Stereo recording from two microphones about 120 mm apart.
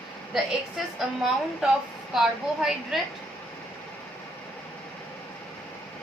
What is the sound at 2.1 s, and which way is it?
Speech, 5° right (ahead or behind).